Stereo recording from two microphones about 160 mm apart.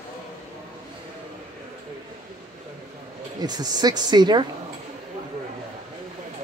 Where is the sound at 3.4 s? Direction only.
25° right (ahead or behind).